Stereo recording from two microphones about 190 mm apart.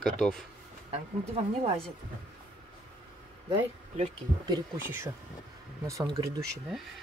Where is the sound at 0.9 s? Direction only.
30° right (ahead or behind).